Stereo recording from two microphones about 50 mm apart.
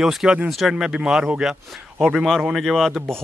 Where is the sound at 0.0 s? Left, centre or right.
Centre.